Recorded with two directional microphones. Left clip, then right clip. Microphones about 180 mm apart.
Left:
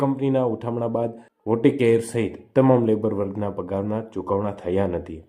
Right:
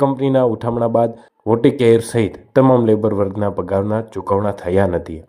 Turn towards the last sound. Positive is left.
turn(degrees=-35)  # may be behind; listen again after turning